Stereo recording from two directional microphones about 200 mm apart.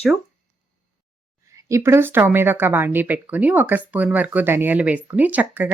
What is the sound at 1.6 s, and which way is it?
Speech, 15° right (ahead or behind).